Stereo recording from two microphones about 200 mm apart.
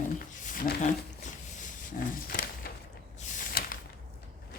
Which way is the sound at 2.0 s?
40° left (ahead or behind).